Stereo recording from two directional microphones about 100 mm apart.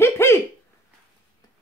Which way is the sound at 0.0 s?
25° left (ahead or behind).